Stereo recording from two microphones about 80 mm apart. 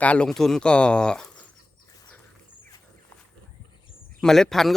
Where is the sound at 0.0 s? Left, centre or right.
Centre.